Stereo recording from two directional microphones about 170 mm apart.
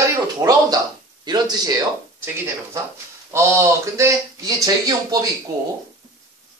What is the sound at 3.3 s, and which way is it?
Speech, 15° right (ahead or behind).